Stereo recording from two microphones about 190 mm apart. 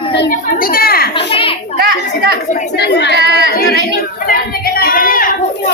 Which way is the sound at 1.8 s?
55° right (ahead or behind).